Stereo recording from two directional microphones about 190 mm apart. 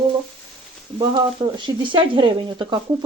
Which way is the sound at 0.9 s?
25° right (ahead or behind).